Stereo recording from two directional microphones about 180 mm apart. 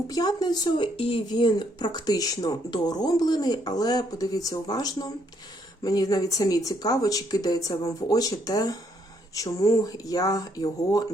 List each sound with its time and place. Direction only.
0.1 s speech: 20° left (ahead or behind)